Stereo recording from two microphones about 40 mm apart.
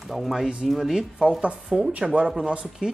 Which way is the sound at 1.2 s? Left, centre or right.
Right.